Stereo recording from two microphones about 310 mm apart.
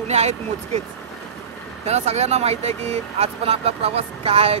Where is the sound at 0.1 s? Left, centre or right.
Right.